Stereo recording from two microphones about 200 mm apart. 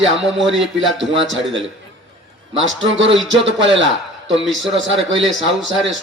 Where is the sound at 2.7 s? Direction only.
70° right (ahead or behind).